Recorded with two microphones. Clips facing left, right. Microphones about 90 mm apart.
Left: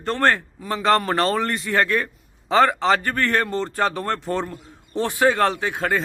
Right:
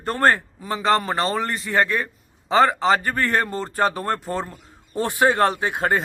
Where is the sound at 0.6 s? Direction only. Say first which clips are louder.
Left 2 dB; centre (ahead or behind).